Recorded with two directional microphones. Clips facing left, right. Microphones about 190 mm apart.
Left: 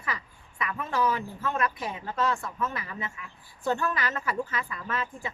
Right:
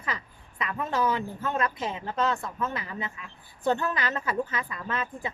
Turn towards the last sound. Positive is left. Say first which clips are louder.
# right 1 dB
turn(degrees=-20)  # may be behind; listen again after turning